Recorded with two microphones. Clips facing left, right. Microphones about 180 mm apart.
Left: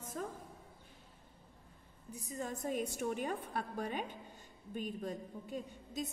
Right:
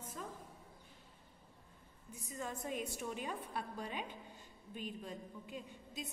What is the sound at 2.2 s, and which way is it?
A woman's voice, 40° left (ahead or behind).